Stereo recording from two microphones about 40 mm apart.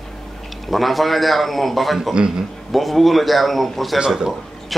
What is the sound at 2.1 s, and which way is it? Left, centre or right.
Speech, right.